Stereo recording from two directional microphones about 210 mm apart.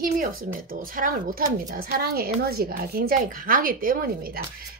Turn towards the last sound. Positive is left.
turn(degrees=-45)  # may be behind; listen again after turning